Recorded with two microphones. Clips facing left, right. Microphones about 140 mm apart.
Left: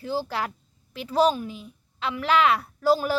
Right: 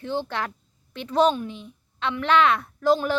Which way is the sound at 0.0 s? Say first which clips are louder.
Even; 5° left (ahead or behind).